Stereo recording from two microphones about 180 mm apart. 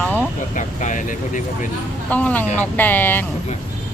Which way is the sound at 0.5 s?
45° left (ahead or behind).